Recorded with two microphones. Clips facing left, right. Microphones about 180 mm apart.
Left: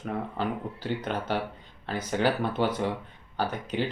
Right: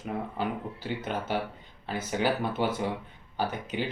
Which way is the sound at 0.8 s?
10° right (ahead or behind).